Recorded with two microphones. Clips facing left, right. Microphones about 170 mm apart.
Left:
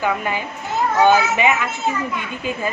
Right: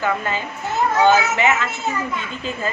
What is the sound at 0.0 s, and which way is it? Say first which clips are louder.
A woman's voice: left 1 dB; 15° left (ahead or behind).